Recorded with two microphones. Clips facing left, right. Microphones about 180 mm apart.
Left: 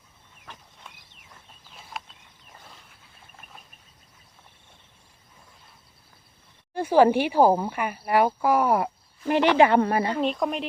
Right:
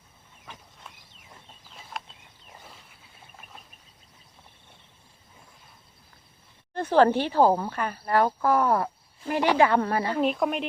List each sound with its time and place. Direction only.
0.9 s a sound: centre (ahead or behind)
6.7 s speech: 10° left (ahead or behind)
9.2 s speech: 25° left (ahead or behind)
10.2 s speech: 5° right (ahead or behind)